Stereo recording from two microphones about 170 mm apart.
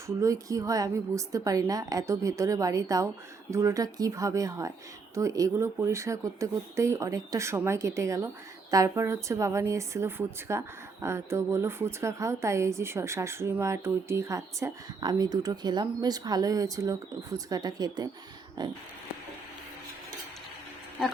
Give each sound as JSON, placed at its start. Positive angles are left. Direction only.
{"t": 0.2, "sound": "a woman's voice", "side_deg": -20}